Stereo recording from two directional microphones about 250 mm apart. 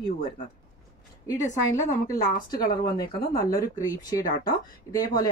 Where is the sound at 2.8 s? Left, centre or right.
Left.